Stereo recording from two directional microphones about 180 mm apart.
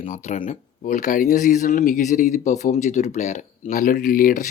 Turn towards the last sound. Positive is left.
turn(degrees=50)  # may be behind; listen again after turning